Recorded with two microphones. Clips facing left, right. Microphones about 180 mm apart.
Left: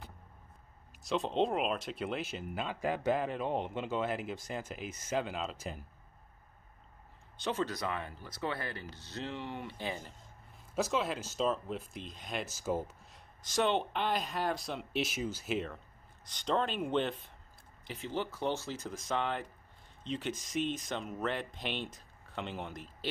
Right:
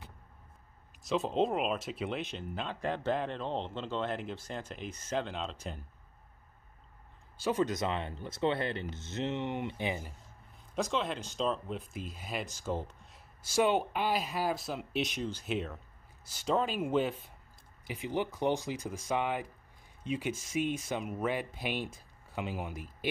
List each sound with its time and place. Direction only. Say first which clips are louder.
1.0 s speech: right 1 dB; centre (ahead or behind)
7.4 s speech: right 4 dB; 15° right (ahead or behind)
10.7 s speech: even; 5° left (ahead or behind)
12.4 s speech: left 1 dB; 10° left (ahead or behind); by 22.9 s 10° right (ahead or behind)